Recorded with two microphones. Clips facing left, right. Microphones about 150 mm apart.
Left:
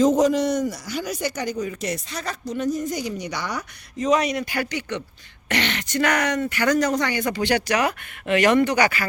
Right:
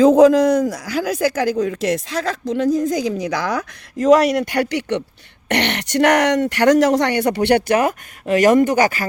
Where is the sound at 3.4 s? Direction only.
70° right (ahead or behind).